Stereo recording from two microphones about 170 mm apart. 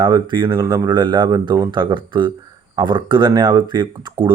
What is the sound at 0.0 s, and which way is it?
Speech, 25° right (ahead or behind).